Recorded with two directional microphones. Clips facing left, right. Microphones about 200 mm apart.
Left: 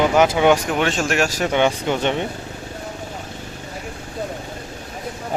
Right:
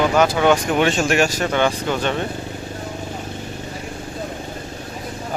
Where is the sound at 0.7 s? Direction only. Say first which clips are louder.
Right 3 dB; centre (ahead or behind).